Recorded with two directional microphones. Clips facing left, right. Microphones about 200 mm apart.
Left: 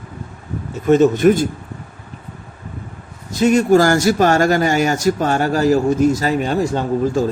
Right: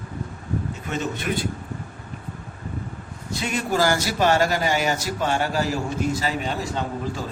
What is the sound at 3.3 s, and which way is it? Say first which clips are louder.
Speech: left 12 dB; 45° left (ahead or behind).